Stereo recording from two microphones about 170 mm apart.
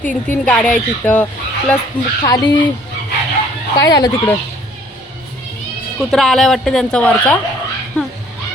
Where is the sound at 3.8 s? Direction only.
20° left (ahead or behind).